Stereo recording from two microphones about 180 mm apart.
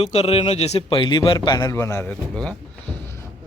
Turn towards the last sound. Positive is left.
turn(degrees=5)  # may be behind; listen again after turning